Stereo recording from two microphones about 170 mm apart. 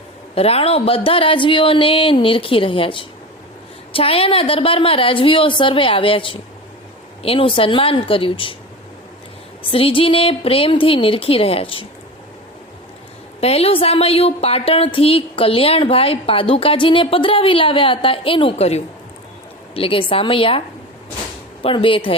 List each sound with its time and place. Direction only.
0.3 s a woman's voice: 35° left (ahead or behind)
9.6 s a woman's voice: 30° left (ahead or behind)
13.4 s a woman's voice: 35° left (ahead or behind)
21.6 s a woman's voice: 30° left (ahead or behind)